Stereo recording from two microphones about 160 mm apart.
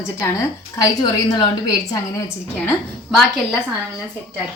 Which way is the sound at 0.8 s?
25° left (ahead or behind).